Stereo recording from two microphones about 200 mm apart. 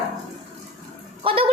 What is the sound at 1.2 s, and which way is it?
Honk, 25° right (ahead or behind).